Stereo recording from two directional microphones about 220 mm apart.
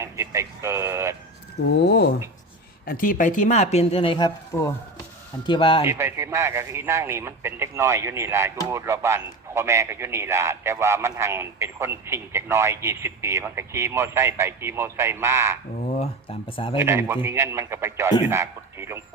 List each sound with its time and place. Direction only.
0.0 s a man's voice: 15° right (ahead or behind)
1.6 s speech: 50° left (ahead or behind)
2.8 s speech: 40° left (ahead or behind); by 5.8 s 25° left (ahead or behind)
5.8 s a man's voice: 10° right (ahead or behind)
16.5 s speech: 25° left (ahead or behind)
16.7 s a man's voice: 10° right (ahead or behind)